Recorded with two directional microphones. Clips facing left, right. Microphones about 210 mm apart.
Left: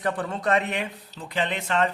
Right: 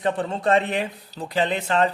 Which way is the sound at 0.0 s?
25° right (ahead or behind).